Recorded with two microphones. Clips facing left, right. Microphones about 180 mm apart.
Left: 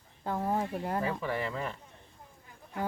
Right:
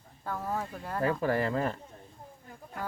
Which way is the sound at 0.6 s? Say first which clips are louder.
Left 3 dB; 15° left (ahead or behind).